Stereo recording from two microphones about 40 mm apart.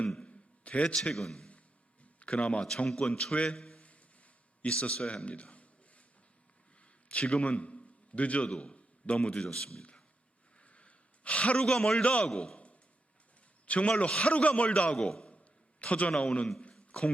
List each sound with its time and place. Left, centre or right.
0.2 s a sound: left
0.9 s a man's voice: centre
1.5 s a sound: left
2.9 s a man's voice: left
3.8 s a sound: left
4.8 s a man's voice: left
7.1 s a man's voice: left; by 9.8 s centre
10.6 s a sound: left
11.6 s a man's voice: centre
12.3 s a man's voice: centre
13.7 s speech: left
15.0 s a man's voice: centre
15.8 s a man's voice: left